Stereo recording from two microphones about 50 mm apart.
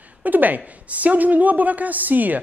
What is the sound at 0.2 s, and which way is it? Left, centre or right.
A woman's voice, right.